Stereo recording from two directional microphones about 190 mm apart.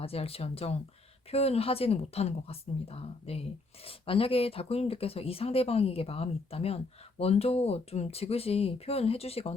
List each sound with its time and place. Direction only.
0.0 s speech: 30° left (ahead or behind)